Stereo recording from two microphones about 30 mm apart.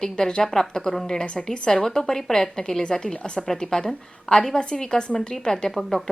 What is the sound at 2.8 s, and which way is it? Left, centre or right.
A woman's voice, left.